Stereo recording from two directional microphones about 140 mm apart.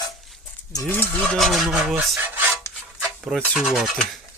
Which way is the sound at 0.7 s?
20° left (ahead or behind).